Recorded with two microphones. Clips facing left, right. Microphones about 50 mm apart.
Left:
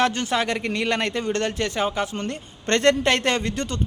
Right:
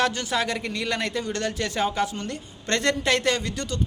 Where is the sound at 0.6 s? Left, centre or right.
Left.